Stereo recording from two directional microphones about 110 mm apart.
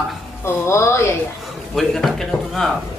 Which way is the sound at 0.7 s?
25° left (ahead or behind).